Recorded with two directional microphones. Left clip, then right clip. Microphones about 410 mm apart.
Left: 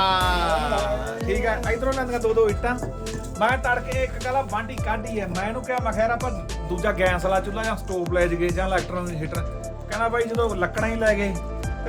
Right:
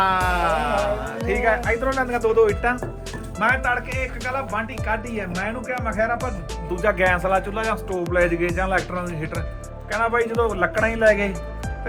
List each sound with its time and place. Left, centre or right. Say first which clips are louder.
0.1 s music: right 1 dB; centre
3.4 s music: right 1 dB; left
5.8 s speech: right 1 dB; centre
6.8 s music: right 3 dB; centre